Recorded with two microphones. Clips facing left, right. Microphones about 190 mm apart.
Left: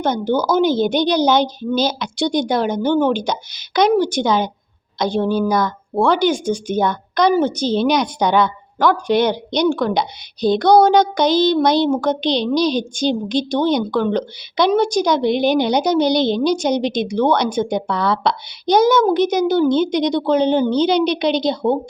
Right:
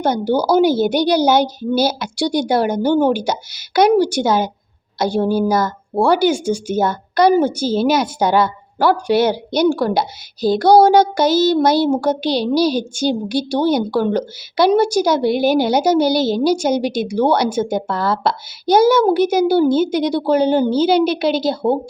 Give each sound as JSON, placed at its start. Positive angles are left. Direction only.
{"t": 0.0, "sound": "speech", "side_deg": -10}